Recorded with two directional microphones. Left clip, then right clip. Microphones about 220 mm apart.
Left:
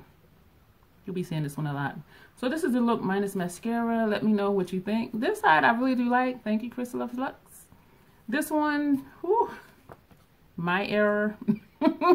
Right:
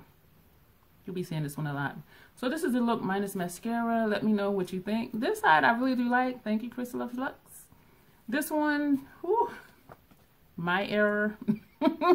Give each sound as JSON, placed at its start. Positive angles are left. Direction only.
{"t": 1.0, "sound": "speech", "side_deg": -5}
{"t": 9.9, "sound": "a sound", "side_deg": 20}
{"t": 10.6, "sound": "speech", "side_deg": -5}